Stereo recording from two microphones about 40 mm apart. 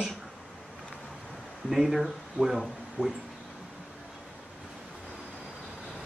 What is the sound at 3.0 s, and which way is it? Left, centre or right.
Speech, right.